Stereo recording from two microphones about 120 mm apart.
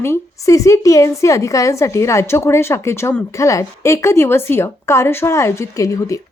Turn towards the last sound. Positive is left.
turn(degrees=25)  # may be behind; listen again after turning